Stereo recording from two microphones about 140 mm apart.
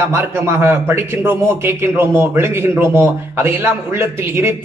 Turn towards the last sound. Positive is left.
turn(degrees=-15)  # may be behind; listen again after turning